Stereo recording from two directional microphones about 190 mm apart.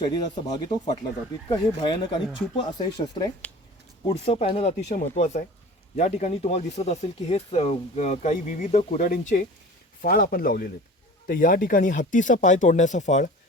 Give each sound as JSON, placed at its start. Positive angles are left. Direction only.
{"t": 0.0, "sound": "speech", "side_deg": 20}